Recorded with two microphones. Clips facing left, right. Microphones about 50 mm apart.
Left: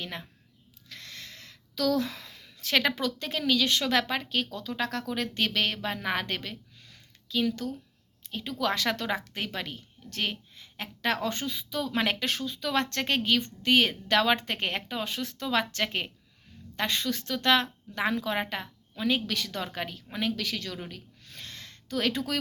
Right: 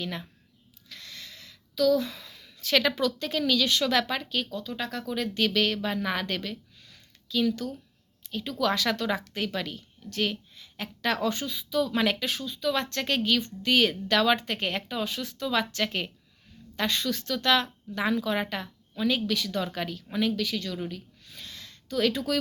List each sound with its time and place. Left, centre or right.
0.0 s a woman's voice: left
0.9 s a sound: left
1.7 s speech: left
2.2 s a woman's voice: left
4.5 s a woman's voice: left
12.2 s speech: left
13.0 s a woman's voice: left
19.3 s a woman's voice: left
20.3 s speech: left
20.7 s a sound: left